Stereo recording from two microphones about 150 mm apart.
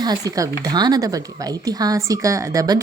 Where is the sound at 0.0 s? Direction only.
25° right (ahead or behind).